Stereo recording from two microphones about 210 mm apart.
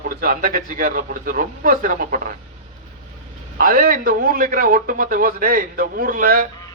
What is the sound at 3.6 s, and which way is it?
A man's voice, 40° right (ahead or behind).